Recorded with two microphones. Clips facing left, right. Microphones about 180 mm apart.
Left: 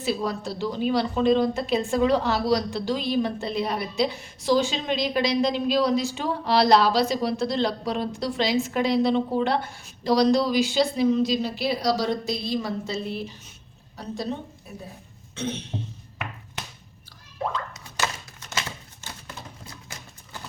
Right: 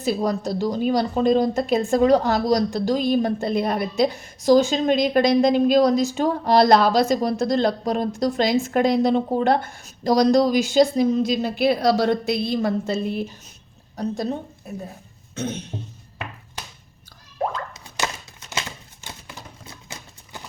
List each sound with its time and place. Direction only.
0.0 s a woman's voice: 45° right (ahead or behind)
15.4 s a woman's voice: 45° right (ahead or behind)
17.9 s a sound: 10° right (ahead or behind)
19.6 s clip-clop: 25° right (ahead or behind)